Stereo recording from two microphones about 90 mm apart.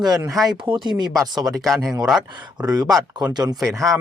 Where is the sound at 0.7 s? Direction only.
60° right (ahead or behind).